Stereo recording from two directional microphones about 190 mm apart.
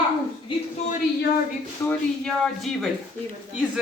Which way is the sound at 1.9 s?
5° left (ahead or behind).